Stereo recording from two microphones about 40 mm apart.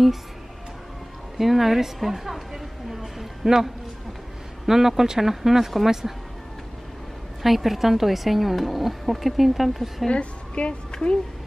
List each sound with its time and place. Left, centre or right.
1.4 s a woman's voice: centre
7.4 s a woman's voice: centre
10.0 s a woman's voice: left